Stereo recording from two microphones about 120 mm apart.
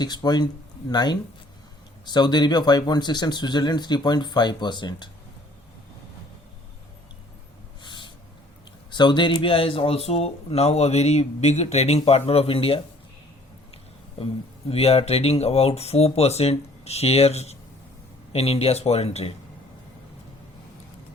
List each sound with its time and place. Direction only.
0.0 s speech: 35° left (ahead or behind)
7.8 s snort: 40° left (ahead or behind)
8.9 s speech: 40° left (ahead or behind)
14.7 s speech: 55° left (ahead or behind)